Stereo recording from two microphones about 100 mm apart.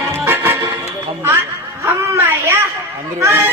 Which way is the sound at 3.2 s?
25° right (ahead or behind).